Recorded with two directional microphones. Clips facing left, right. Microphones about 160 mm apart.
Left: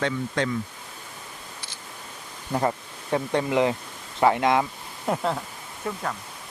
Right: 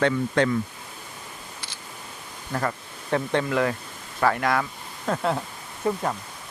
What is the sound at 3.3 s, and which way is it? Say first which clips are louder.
Speech: left 3 dB; 15° left (ahead or behind).